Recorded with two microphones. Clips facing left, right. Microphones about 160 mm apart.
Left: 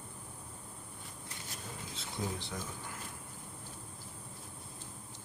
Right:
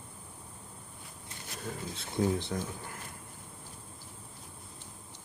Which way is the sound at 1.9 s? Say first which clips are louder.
Right 10 dB; 55° right (ahead or behind).